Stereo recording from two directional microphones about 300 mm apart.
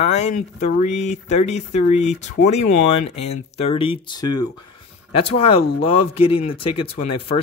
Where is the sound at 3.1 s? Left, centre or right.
Left.